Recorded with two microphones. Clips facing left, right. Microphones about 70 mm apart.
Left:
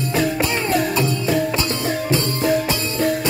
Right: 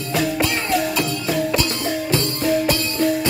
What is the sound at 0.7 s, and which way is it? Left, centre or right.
Music, left.